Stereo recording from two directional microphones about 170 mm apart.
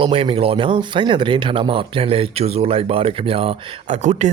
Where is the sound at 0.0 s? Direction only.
30° right (ahead or behind).